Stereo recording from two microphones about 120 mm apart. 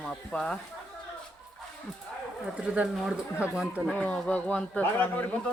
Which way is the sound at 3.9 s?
10° left (ahead or behind).